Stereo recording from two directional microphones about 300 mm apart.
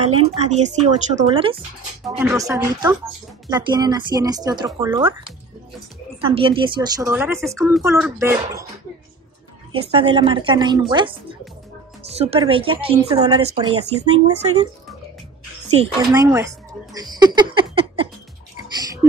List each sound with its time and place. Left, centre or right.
0.0 s speech: right
6.2 s speech: centre
9.8 s speech: centre
15.8 s speech: centre